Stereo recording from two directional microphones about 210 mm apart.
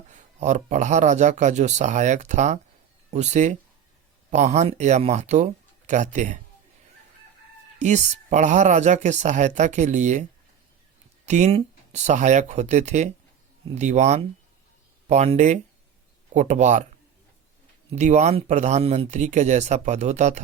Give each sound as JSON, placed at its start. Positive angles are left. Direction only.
{"t": 0.1, "sound": "speech", "side_deg": -35}
{"t": 7.8, "sound": "speech", "side_deg": -35}
{"t": 11.3, "sound": "speech", "side_deg": -35}
{"t": 17.9, "sound": "speech", "side_deg": -35}